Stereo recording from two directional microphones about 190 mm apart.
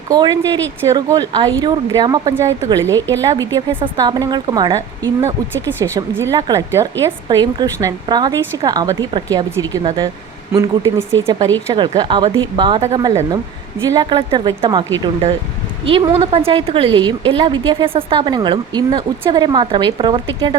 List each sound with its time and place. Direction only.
0.1 s a woman's voice: 20° right (ahead or behind)
15.0 s a woman's voice: 35° right (ahead or behind)